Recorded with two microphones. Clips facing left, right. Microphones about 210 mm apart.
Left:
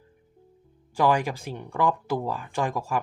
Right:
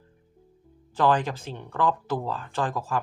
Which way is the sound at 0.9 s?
10° left (ahead or behind).